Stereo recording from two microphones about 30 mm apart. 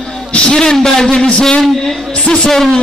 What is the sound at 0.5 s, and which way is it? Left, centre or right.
Speech, left.